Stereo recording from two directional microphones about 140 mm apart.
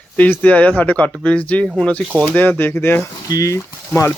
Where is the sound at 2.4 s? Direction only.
15° left (ahead or behind).